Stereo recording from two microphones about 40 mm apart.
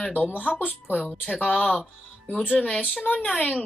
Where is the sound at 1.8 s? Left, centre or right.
Centre.